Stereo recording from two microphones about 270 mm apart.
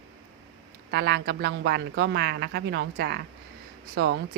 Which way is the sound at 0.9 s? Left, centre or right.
Right.